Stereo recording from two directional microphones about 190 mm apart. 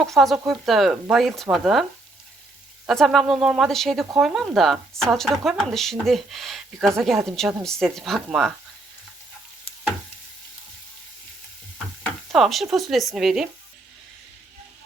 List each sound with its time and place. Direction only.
0.0 s speech: centre (ahead or behind)
2.8 s speech: centre (ahead or behind)
12.3 s speech: centre (ahead or behind)